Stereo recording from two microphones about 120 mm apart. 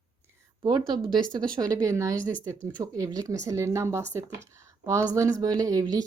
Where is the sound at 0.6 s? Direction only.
35° right (ahead or behind).